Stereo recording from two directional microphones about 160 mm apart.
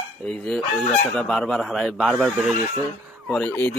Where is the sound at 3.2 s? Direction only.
5° left (ahead or behind).